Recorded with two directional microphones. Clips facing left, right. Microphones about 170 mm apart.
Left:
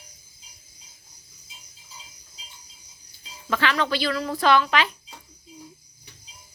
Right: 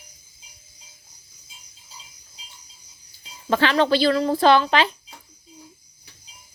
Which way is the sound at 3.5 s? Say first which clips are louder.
Right 6 dB; 30° right (ahead or behind).